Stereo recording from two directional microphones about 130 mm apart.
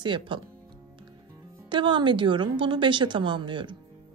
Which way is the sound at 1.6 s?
35° right (ahead or behind).